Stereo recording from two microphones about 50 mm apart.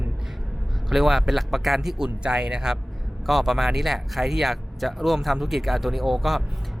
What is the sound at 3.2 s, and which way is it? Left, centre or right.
Speech, centre.